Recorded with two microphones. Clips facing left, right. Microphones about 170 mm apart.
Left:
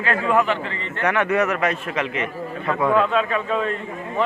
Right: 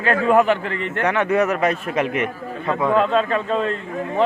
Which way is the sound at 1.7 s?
45° right (ahead or behind).